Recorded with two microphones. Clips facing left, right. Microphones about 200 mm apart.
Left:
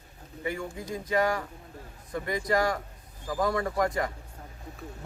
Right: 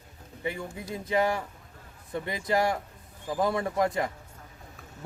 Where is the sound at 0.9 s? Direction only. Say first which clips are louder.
Even; 25° right (ahead or behind).